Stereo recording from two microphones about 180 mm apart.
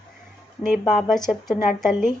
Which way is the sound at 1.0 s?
Centre (ahead or behind).